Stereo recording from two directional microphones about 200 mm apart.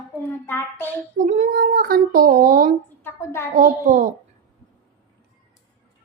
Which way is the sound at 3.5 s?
40° right (ahead or behind).